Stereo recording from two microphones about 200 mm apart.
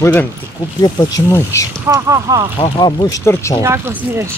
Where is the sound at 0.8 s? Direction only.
20° left (ahead or behind).